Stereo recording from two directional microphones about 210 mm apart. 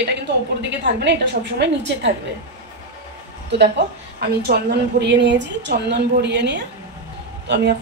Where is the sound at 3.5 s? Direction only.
50° right (ahead or behind).